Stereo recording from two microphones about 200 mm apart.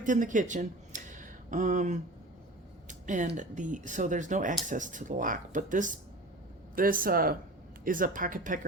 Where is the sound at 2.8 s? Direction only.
40° right (ahead or behind).